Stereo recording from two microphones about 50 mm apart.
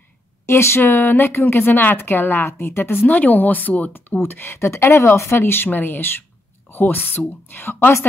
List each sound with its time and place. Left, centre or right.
0.5 s speech: left
3.1 s speech: left